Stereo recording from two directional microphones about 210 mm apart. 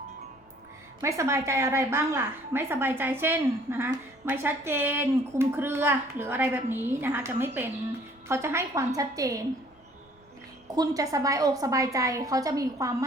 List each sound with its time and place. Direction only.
1.0 s a woman's voice: 15° right (ahead or behind)
10.7 s a woman's voice: 15° right (ahead or behind)